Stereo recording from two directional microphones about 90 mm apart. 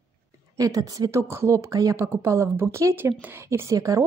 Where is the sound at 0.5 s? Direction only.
40° right (ahead or behind).